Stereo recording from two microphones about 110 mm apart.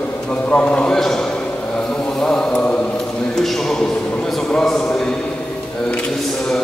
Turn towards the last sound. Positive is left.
turn(degrees=5)  # may be behind; listen again after turning